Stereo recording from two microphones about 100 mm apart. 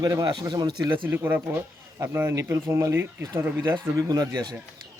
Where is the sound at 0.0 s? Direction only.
40° right (ahead or behind).